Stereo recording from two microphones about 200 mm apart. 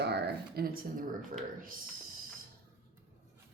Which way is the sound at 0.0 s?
55° right (ahead or behind).